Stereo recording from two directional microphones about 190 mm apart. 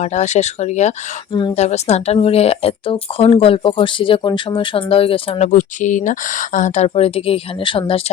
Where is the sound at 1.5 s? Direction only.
35° left (ahead or behind).